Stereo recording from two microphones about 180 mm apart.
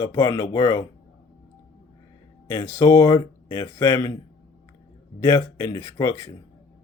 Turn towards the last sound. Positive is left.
turn(degrees=15)  # may be behind; listen again after turning